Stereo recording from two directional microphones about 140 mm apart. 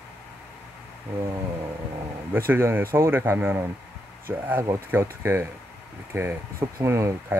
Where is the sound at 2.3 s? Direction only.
15° right (ahead or behind).